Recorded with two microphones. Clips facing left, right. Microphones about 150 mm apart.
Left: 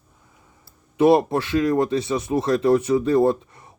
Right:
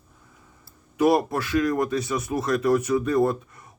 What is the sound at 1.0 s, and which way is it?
Speech, 25° left (ahead or behind).